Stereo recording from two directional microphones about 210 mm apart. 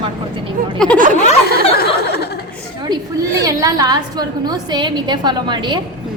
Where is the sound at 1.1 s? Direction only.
35° left (ahead or behind).